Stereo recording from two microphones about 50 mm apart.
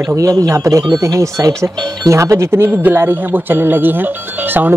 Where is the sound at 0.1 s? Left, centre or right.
Right.